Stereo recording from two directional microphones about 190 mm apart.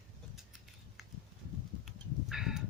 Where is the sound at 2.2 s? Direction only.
Centre (ahead or behind).